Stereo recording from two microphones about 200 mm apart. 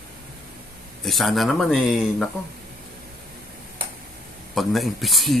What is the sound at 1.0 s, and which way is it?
Speech, centre (ahead or behind).